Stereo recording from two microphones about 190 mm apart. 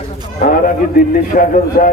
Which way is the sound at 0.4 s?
50° left (ahead or behind).